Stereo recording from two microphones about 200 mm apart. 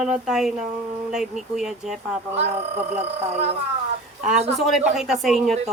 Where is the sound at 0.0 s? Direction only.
5° right (ahead or behind).